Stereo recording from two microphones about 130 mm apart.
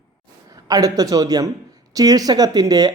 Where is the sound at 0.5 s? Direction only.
25° right (ahead or behind).